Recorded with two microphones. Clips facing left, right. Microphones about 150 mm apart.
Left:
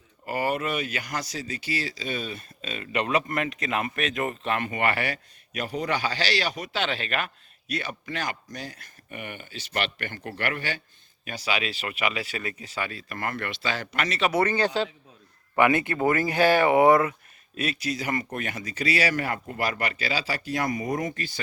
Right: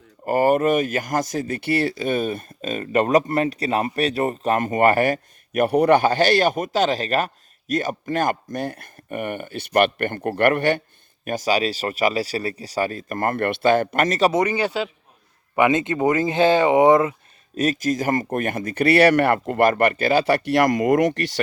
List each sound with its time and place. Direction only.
0.3 s speech: 45° right (ahead or behind)
11.3 s speech: 45° right (ahead or behind)
14.3 s speech: 10° right (ahead or behind)
15.5 s speech: 20° right (ahead or behind)
17.6 s speech: 45° right (ahead or behind); by 21.4 s 75° right (ahead or behind)